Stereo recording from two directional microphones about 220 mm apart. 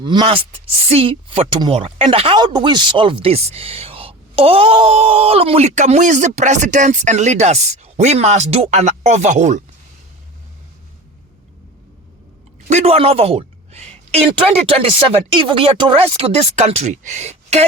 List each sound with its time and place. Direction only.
0.0 s speech: 20° right (ahead or behind)
12.6 s a woman's voice: 30° right (ahead or behind)